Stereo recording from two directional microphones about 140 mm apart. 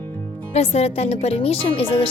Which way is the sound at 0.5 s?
50° left (ahead or behind).